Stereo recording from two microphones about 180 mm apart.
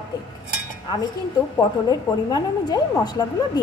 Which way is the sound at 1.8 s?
20° left (ahead or behind).